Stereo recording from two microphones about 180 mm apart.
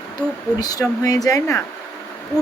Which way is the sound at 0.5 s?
20° left (ahead or behind).